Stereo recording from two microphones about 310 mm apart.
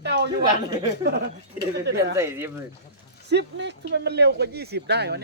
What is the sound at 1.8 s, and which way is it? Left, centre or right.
Speech, right.